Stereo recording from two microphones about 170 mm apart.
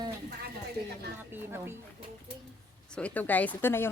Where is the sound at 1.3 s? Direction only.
15° right (ahead or behind).